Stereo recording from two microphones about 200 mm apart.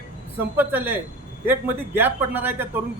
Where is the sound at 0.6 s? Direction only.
10° right (ahead or behind).